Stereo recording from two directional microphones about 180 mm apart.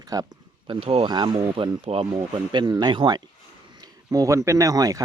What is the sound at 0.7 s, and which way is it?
Speech, 30° right (ahead or behind).